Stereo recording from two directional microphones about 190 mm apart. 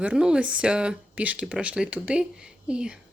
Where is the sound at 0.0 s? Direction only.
5° right (ahead or behind).